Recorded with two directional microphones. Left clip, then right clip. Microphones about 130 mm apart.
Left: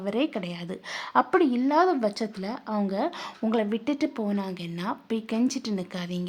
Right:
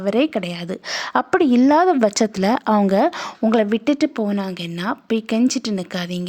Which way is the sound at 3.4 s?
45° right (ahead or behind).